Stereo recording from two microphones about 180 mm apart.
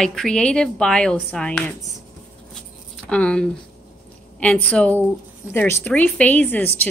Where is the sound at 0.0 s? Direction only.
5° left (ahead or behind).